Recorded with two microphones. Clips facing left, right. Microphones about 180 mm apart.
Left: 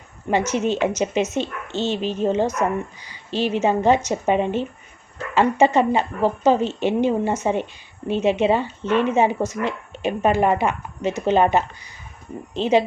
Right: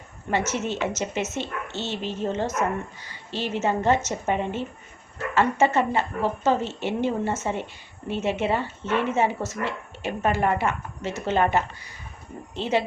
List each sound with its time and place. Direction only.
0.3 s speech: 15° left (ahead or behind)